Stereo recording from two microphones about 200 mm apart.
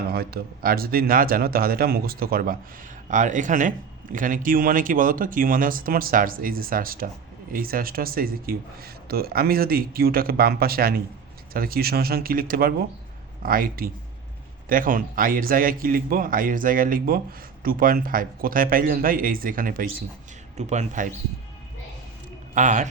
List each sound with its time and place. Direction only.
0.1 s a man's voice: 50° right (ahead or behind)
22.5 s speech: 40° right (ahead or behind)